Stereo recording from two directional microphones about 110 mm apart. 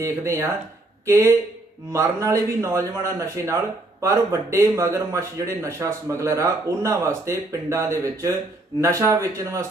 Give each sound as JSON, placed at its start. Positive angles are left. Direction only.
{"t": 0.0, "sound": "speech", "side_deg": -25}